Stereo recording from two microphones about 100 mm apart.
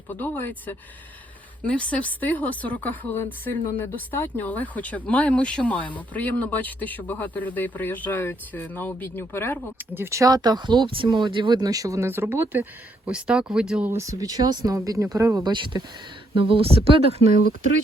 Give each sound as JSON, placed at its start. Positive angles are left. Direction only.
{"t": 0.1, "sound": "speech", "side_deg": 20}
{"t": 9.7, "sound": "speech", "side_deg": -25}
{"t": 13.1, "sound": "speech", "side_deg": -10}
{"t": 13.9, "sound": "speech", "side_deg": -30}
{"t": 15.4, "sound": "speech", "side_deg": -50}
{"t": 16.3, "sound": "speech", "side_deg": -65}